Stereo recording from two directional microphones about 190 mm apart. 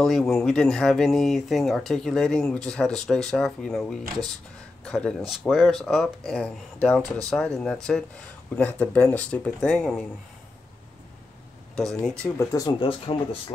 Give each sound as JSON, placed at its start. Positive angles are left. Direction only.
{"t": 0.0, "sound": "speech", "side_deg": 0}
{"t": 4.8, "sound": "speech", "side_deg": 5}
{"t": 11.7, "sound": "speech", "side_deg": 0}
{"t": 12.4, "sound": "speech", "side_deg": 15}
{"t": 12.8, "sound": "speech", "side_deg": 30}